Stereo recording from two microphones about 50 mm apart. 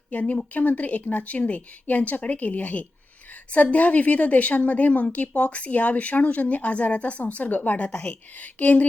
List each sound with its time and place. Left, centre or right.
0.1 s speech: left